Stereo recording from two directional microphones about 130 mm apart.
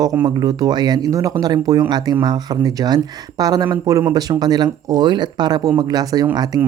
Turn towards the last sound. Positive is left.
turn(degrees=-30)  # may be behind; listen again after turning